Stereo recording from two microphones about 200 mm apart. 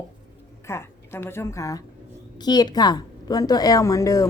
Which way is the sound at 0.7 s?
10° left (ahead or behind).